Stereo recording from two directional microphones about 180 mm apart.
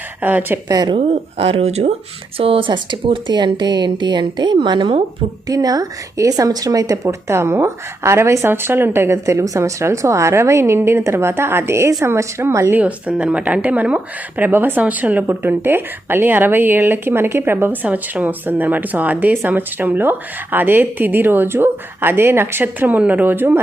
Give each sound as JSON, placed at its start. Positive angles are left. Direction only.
{"t": 0.2, "sound": "a woman's voice", "side_deg": -10}